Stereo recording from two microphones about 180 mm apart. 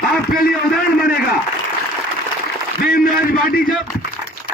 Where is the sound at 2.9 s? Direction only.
55° left (ahead or behind).